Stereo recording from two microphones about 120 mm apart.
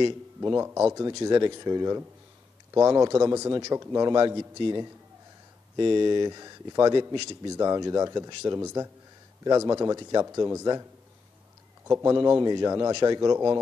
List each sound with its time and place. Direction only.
0.4 s a man's voice: 25° right (ahead or behind)
1.2 s a man's voice: 35° right (ahead or behind)
9.4 s a man's voice: 30° right (ahead or behind)
11.9 s a man's voice: 25° right (ahead or behind)